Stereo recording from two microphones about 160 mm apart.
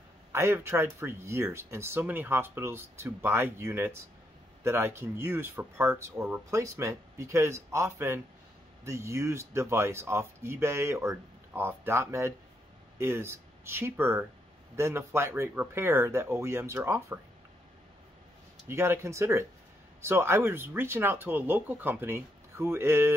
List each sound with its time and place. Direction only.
0.3 s speech: 15° right (ahead or behind)
18.7 s speech: 15° right (ahead or behind)